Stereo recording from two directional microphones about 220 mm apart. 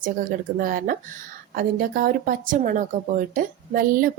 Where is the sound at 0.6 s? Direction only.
40° right (ahead or behind).